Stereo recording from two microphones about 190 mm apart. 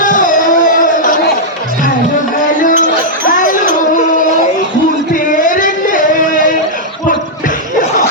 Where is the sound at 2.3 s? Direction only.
45° left (ahead or behind).